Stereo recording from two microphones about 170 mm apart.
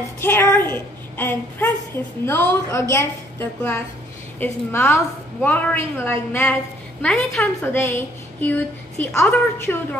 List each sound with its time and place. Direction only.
0.2 s a woman's voice: 15° left (ahead or behind)